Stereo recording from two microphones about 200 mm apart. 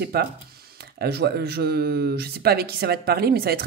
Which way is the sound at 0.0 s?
55° right (ahead or behind).